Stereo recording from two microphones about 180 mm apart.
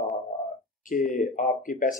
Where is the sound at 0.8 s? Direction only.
50° left (ahead or behind).